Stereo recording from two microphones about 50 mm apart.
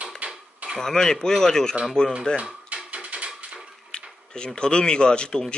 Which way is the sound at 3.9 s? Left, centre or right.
Left.